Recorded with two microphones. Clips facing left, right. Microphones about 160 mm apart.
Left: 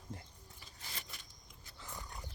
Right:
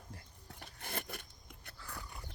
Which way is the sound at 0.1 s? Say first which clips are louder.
Left 6 dB; 25° left (ahead or behind).